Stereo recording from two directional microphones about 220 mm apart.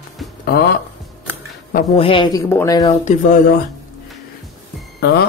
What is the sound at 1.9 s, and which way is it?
Speech, 25° left (ahead or behind).